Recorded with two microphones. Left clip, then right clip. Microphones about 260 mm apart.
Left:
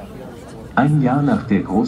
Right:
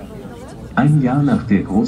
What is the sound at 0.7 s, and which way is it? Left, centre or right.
Speech, left.